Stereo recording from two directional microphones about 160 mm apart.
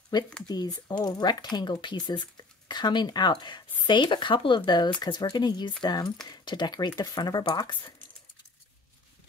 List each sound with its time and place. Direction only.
0.1 s speech: 25° left (ahead or behind)